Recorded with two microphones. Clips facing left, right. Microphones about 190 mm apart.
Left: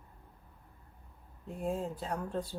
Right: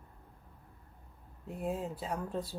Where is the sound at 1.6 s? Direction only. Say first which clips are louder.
Left 1 dB; 5° right (ahead or behind).